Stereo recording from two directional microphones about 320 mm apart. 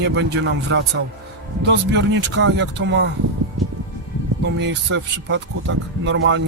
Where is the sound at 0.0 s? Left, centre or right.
Right.